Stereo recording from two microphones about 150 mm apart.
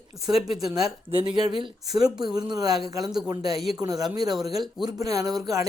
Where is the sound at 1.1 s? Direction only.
30° right (ahead or behind).